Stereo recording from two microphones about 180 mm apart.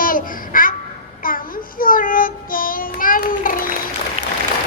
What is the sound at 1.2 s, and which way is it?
Child singing, 50° left (ahead or behind).